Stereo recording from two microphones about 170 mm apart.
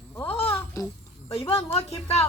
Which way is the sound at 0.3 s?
35° left (ahead or behind).